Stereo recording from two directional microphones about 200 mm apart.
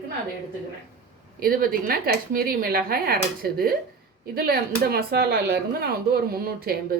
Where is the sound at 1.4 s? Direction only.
45° right (ahead or behind).